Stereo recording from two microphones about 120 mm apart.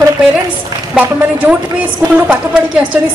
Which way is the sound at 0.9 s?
10° right (ahead or behind).